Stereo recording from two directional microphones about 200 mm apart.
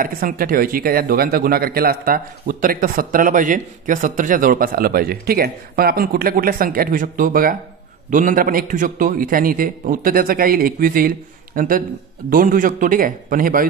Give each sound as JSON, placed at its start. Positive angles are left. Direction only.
{"t": 0.0, "sound": "speech", "side_deg": -45}